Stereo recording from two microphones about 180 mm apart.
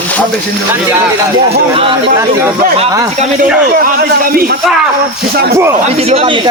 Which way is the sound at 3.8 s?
55° right (ahead or behind).